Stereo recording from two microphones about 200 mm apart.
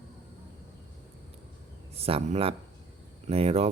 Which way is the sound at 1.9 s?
30° right (ahead or behind).